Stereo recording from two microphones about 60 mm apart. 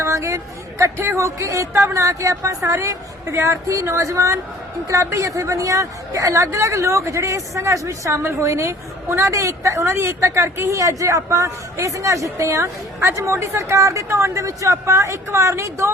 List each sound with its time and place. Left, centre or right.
0.0 s a woman's voice: right
9.3 s a woman's voice: right
14.4 s a woman's voice: right